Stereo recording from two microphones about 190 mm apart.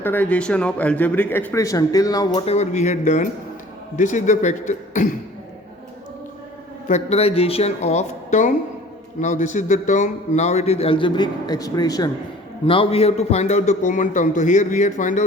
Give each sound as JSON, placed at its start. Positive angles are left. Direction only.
{"t": 0.0, "sound": "a man's voice", "side_deg": 10}
{"t": 2.5, "sound": "a man's voice", "side_deg": 35}
{"t": 6.8, "sound": "a man's voice", "side_deg": 35}